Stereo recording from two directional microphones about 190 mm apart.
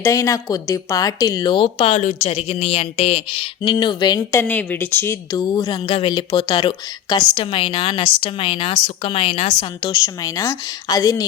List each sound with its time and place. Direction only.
0.0 s speech: 15° left (ahead or behind)